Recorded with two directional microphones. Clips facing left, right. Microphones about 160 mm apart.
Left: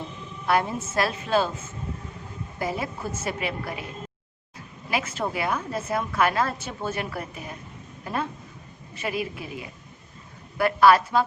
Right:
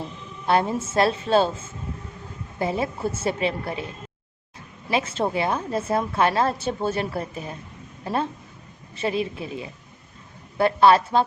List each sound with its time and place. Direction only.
0.4 s a woman's voice: 30° right (ahead or behind)
4.9 s a woman's voice: 25° right (ahead or behind)